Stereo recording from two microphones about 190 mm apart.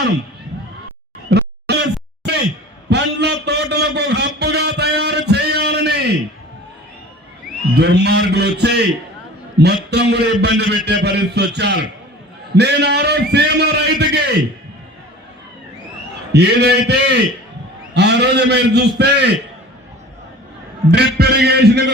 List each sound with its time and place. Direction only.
1.3 s a sound: 60° right (ahead or behind)
7.8 s a man's voice: 60° right (ahead or behind)
16.3 s a man's voice: 60° right (ahead or behind)
21.2 s a man's voice: 60° right (ahead or behind)